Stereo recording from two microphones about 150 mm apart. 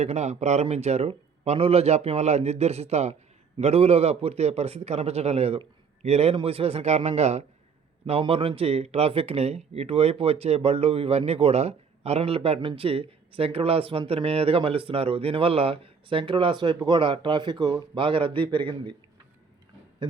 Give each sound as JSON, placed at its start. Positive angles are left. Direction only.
{"t": 0.0, "sound": "a man's voice", "side_deg": -45}